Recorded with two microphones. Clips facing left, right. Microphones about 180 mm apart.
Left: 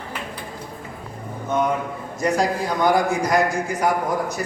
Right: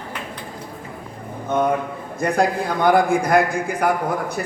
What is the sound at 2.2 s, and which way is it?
A man's voice, 55° right (ahead or behind).